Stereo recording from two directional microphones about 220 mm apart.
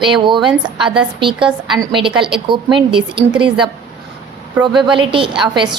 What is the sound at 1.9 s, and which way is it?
A woman's voice, 20° right (ahead or behind).